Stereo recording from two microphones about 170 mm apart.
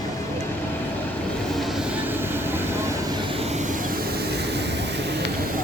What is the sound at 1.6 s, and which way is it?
Vehicle, 5° right (ahead or behind).